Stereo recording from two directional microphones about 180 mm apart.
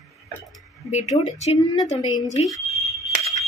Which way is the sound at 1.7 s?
25° left (ahead or behind).